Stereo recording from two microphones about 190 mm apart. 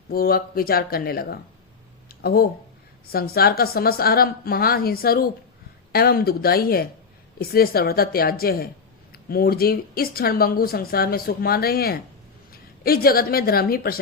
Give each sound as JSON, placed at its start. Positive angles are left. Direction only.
{"t": 0.1, "sound": "speech", "side_deg": 50}
{"t": 2.0, "sound": "a sound", "side_deg": 55}
{"t": 3.1, "sound": "speech", "side_deg": 55}